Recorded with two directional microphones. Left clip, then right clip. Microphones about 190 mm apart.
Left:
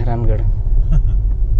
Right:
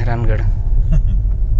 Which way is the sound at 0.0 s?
5° left (ahead or behind).